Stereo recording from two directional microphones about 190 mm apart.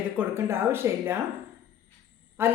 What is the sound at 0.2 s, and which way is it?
Speech, 15° right (ahead or behind).